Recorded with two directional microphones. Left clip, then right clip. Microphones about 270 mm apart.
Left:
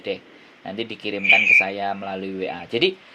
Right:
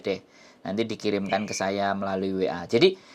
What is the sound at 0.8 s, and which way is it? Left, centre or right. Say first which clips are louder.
Speech: left 1 dB; right.